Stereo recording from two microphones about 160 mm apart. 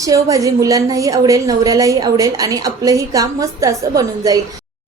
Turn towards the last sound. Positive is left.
turn(degrees=-20)  # may be behind; listen again after turning